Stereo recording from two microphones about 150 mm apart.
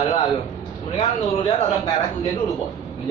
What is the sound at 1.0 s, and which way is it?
Speech, 30° left (ahead or behind).